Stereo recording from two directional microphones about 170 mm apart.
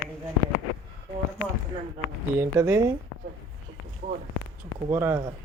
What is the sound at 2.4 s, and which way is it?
Speech, 15° right (ahead or behind).